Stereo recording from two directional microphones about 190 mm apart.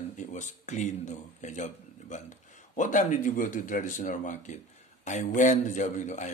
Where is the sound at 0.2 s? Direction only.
40° left (ahead or behind).